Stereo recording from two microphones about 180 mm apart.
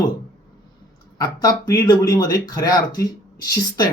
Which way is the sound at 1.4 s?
20° left (ahead or behind).